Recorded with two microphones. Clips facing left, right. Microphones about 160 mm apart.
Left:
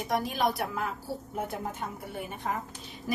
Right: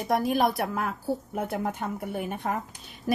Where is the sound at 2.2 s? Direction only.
60° right (ahead or behind).